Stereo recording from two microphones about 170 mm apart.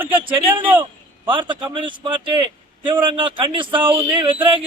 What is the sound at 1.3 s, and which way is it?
Speech, 30° right (ahead or behind).